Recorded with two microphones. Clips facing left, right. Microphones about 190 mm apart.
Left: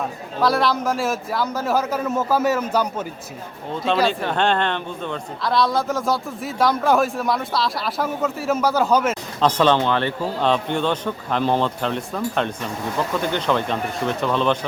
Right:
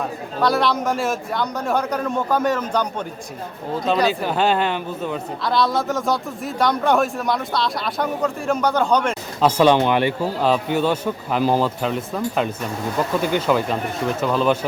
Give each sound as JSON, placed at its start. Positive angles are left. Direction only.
{"t": 0.3, "sound": "a man's voice", "side_deg": 0}
{"t": 9.4, "sound": "a man's voice", "side_deg": -10}